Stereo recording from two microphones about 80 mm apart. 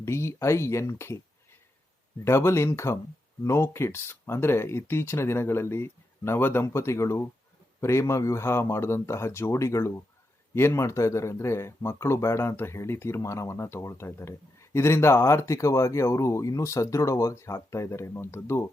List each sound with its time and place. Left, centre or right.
0.0 s speech: left
2.2 s speech: left